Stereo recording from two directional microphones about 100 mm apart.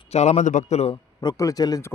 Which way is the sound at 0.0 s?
90° left.